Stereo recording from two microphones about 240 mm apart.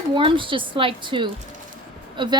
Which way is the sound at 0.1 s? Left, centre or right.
Right.